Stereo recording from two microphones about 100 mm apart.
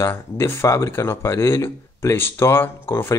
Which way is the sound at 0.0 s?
25° left (ahead or behind).